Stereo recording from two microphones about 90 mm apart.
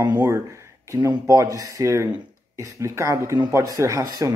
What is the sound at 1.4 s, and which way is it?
Speech, 40° right (ahead or behind).